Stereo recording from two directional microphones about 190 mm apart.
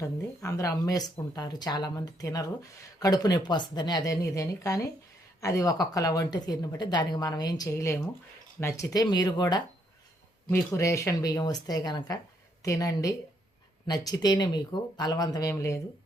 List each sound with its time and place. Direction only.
0.0 s speech: 15° left (ahead or behind)